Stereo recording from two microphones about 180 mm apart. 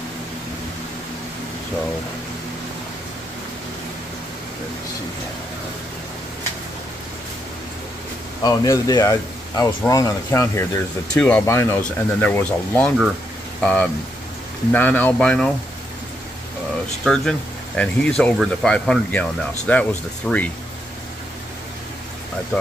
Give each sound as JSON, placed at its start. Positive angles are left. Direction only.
{"t": 8.4, "sound": "speech", "side_deg": 20}
{"t": 17.0, "sound": "speech", "side_deg": 5}